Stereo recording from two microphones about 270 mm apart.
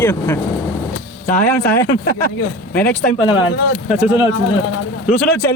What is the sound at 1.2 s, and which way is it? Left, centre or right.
Speech, left.